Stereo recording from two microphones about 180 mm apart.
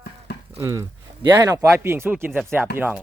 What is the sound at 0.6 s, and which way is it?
Speech, 15° right (ahead or behind).